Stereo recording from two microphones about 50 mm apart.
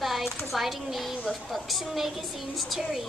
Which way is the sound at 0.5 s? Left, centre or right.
Centre.